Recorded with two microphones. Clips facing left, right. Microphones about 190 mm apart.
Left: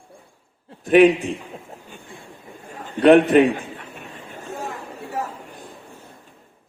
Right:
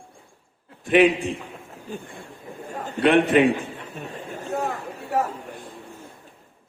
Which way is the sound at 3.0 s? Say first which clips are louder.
Left 4 dB; 40° left (ahead or behind).